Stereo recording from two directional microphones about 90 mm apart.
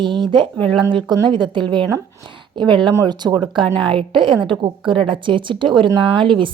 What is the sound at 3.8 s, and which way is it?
A woman's voice, 70° right (ahead or behind).